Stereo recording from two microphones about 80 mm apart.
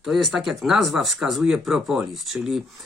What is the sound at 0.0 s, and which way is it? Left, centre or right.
Speech, centre.